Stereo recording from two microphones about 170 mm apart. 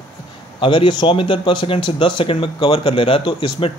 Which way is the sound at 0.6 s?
30° left (ahead or behind).